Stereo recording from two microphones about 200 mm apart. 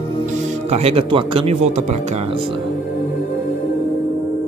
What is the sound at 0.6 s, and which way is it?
Speech, 30° right (ahead or behind).